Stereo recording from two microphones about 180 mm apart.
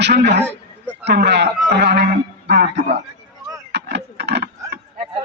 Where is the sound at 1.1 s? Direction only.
70° right (ahead or behind).